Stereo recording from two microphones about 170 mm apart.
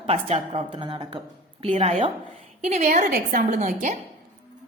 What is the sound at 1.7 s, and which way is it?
A woman's voice, 40° right (ahead or behind).